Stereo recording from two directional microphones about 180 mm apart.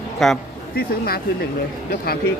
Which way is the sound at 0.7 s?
60° left (ahead or behind).